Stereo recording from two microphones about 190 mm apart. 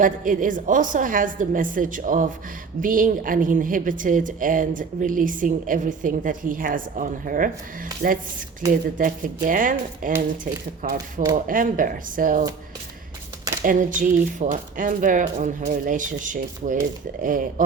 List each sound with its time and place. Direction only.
0.0 s a woman's voice: 45° right (ahead or behind)
10.9 s speech: 15° right (ahead or behind)
11.3 s a woman's voice: 45° right (ahead or behind)
13.6 s a woman's voice: 45° right (ahead or behind)